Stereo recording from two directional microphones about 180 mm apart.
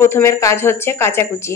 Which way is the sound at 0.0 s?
15° left (ahead or behind).